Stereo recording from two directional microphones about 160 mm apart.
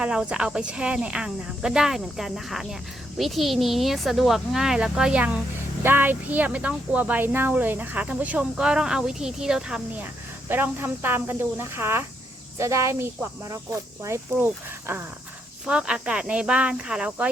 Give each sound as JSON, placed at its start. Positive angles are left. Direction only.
{"t": 0.0, "sound": "speech", "side_deg": -5}